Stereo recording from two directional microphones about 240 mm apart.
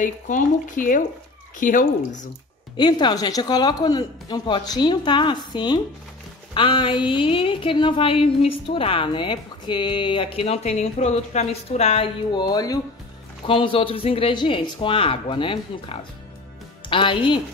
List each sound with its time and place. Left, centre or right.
0.0 s speech: left
2.8 s speech: centre